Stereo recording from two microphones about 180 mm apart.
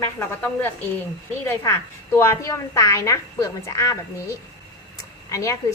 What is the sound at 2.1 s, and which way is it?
A woman's voice, 15° left (ahead or behind).